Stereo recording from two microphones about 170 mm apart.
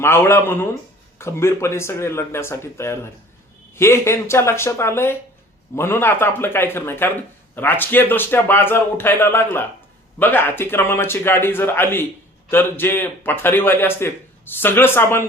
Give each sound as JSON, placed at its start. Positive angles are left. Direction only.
{"t": 0.0, "sound": "a man's voice", "side_deg": 15}